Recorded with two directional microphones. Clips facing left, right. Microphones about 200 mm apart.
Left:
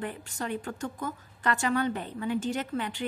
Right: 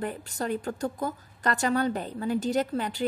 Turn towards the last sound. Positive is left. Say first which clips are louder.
# right 5 dB
turn(degrees=-40)  # may be behind; listen again after turning